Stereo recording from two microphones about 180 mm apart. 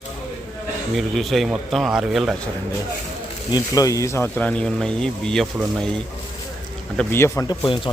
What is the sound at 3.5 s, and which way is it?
Speech, 20° left (ahead or behind).